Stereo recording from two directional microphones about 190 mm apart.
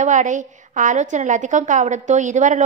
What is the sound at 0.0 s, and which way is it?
A woman's voice, 40° right (ahead or behind).